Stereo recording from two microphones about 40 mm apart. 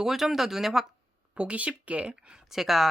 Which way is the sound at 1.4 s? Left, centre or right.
Right.